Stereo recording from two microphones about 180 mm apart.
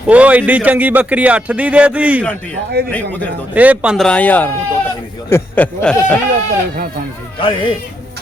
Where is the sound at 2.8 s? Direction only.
60° right (ahead or behind).